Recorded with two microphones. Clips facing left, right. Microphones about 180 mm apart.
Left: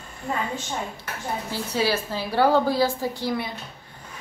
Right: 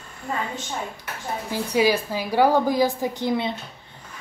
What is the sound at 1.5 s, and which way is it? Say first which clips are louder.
A woman's voice: right 5 dB; 15° right (ahead or behind).